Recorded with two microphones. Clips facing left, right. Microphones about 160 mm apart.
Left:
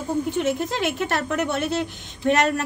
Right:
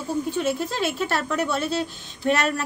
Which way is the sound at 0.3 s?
20° left (ahead or behind).